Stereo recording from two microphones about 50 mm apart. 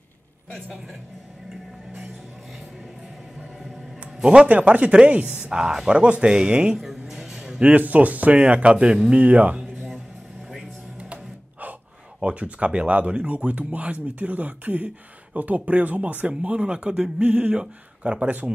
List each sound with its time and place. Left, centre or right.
4.2 s speech: centre
4.5 s speech: right
6.8 s a sound: centre
7.6 s speech: right
9.2 s speech: right
12.2 s speech: right